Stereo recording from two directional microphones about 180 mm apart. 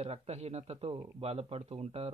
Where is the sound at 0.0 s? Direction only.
35° right (ahead or behind).